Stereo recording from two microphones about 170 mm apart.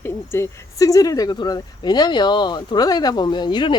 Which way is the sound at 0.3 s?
20° left (ahead or behind).